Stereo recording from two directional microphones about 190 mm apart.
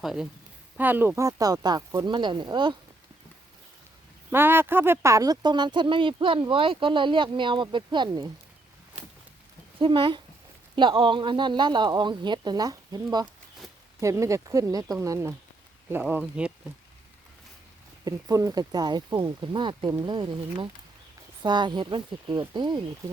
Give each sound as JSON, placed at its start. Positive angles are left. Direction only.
{"t": 0.0, "sound": "a woman's voice", "side_deg": 0}
{"t": 4.3, "sound": "speech", "side_deg": -10}
{"t": 9.7, "sound": "speech", "side_deg": -25}
{"t": 18.0, "sound": "speech", "side_deg": -20}